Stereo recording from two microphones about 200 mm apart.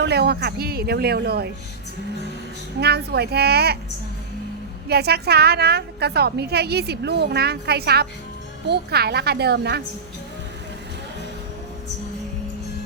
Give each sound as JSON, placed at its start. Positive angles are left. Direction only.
{"t": 0.0, "sound": "a woman's voice", "side_deg": -55}
{"t": 2.8, "sound": "a woman's voice", "side_deg": -55}
{"t": 4.9, "sound": "a woman's voice", "side_deg": -55}